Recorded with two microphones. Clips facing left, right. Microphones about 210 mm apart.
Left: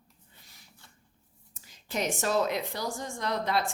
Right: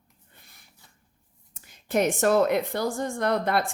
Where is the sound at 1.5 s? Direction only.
55° right (ahead or behind).